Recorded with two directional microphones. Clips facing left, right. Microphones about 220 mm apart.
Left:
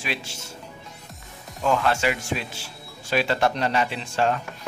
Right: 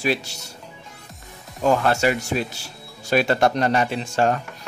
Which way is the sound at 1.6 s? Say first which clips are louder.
Right 4 dB; 40° right (ahead or behind).